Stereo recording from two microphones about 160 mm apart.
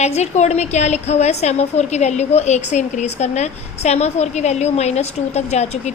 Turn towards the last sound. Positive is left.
turn(degrees=40)  # may be behind; listen again after turning